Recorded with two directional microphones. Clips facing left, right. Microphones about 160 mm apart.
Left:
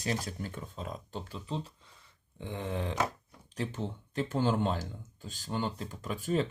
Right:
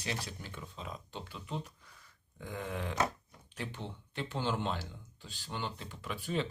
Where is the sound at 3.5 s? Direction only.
40° left (ahead or behind).